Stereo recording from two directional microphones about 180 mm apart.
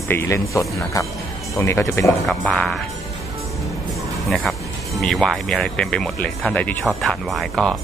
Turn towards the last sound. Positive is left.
turn(degrees=0)  # may be behind; listen again after turning